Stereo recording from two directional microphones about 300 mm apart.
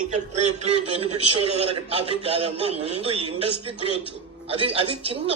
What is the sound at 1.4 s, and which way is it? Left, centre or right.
Speech, centre.